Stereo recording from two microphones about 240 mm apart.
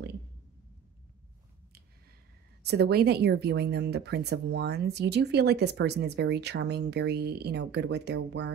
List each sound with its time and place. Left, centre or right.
2.6 s speech: right